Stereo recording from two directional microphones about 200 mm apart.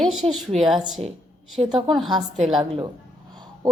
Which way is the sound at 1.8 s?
Centre (ahead or behind).